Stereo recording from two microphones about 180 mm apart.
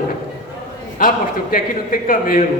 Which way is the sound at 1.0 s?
50° left (ahead or behind).